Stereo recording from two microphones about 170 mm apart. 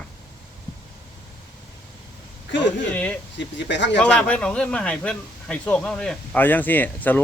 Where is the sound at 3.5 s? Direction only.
90° left.